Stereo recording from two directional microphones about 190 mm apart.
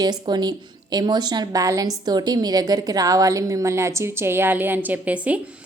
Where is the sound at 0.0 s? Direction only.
20° right (ahead or behind).